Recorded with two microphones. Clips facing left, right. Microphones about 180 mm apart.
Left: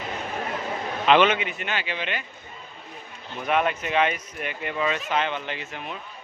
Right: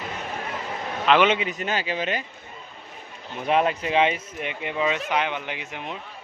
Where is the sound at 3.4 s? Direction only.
30° right (ahead or behind).